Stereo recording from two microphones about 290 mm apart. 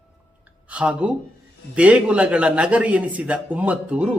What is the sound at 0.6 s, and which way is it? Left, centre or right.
Speech, centre.